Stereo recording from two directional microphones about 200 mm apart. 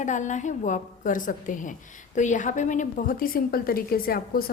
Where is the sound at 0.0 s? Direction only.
35° left (ahead or behind).